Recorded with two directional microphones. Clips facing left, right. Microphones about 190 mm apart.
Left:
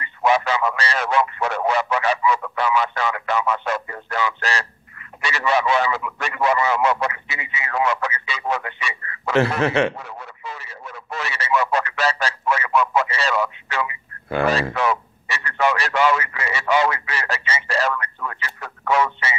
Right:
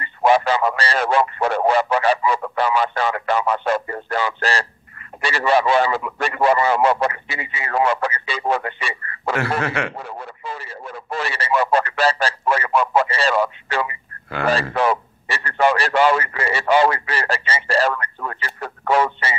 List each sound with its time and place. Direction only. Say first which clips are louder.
0.0 s radio: right 3 dB; 35° right (ahead or behind)
4.4 s a sound: right 3 dB; 35° right (ahead or behind)
5.2 s speech: right 3 dB; 35° right (ahead or behind)
9.6 s a man's voice: left 5 dB; 25° left (ahead or behind)
9.9 s radio: right 4 dB; 30° right (ahead or behind)